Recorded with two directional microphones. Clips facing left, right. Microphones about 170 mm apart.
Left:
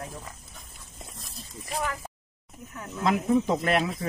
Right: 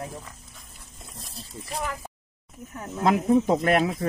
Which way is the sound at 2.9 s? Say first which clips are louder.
Right 3 dB; 45° right (ahead or behind).